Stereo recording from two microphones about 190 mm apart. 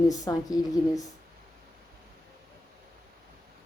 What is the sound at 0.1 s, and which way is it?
A woman's voice, 20° left (ahead or behind).